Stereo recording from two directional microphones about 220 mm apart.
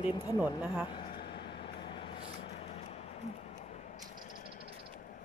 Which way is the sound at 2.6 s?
30° left (ahead or behind).